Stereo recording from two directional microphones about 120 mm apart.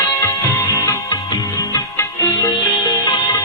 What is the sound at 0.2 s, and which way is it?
Music, 25° left (ahead or behind).